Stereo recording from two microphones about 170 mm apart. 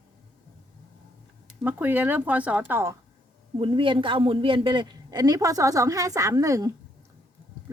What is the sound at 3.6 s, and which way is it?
A woman's voice, 30° right (ahead or behind).